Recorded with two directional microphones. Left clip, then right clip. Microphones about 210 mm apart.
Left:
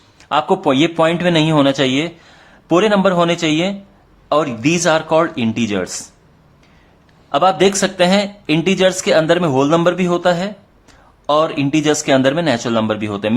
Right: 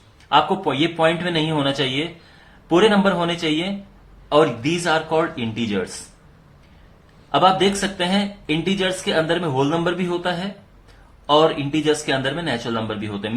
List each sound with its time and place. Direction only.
0.3 s speech: 40° left (ahead or behind)
7.3 s speech: 40° left (ahead or behind)